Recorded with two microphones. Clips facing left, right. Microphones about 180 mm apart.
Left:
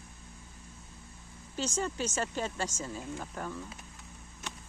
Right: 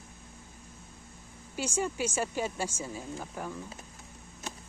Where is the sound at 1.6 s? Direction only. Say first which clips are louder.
Right 2 dB; 10° right (ahead or behind).